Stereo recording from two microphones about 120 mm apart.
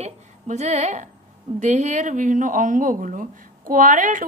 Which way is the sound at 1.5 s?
85° right.